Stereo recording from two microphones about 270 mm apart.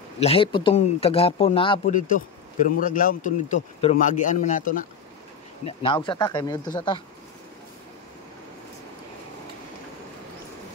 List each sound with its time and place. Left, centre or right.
0.2 s a man's voice: left